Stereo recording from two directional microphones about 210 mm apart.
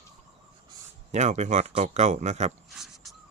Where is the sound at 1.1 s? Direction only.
35° right (ahead or behind).